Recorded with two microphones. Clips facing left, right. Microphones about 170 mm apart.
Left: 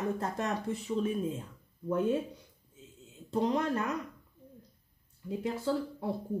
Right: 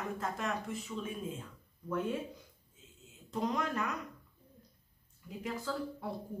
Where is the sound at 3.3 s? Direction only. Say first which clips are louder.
Left 5 dB; 30° left (ahead or behind).